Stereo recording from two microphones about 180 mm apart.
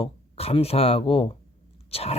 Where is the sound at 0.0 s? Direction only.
35° left (ahead or behind).